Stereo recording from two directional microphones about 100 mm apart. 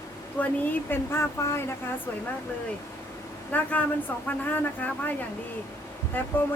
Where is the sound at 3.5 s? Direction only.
15° left (ahead or behind).